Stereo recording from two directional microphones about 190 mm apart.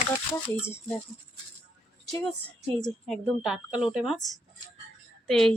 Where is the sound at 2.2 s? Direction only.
5° left (ahead or behind).